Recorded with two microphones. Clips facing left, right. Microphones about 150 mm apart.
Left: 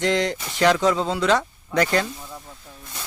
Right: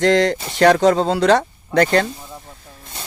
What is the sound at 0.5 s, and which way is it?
Speech, 55° right (ahead or behind).